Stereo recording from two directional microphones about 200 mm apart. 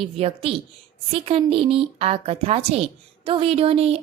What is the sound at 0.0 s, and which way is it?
A woman's voice, 30° right (ahead or behind).